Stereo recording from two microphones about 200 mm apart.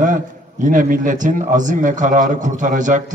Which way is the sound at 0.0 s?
40° right (ahead or behind).